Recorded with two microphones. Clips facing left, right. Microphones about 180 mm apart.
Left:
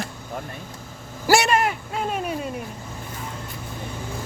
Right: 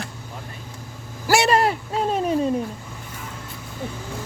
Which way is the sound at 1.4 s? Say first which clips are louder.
Right 3 dB; 35° right (ahead or behind).